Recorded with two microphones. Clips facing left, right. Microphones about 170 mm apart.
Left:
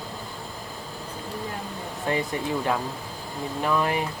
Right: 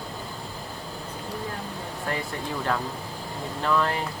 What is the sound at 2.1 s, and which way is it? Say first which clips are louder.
Speech: left 5 dB; 20° left (ahead or behind).